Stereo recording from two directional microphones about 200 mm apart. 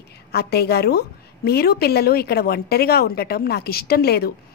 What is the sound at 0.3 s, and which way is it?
A woman's voice, 55° left (ahead or behind).